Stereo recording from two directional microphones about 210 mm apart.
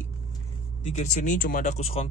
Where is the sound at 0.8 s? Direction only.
35° left (ahead or behind).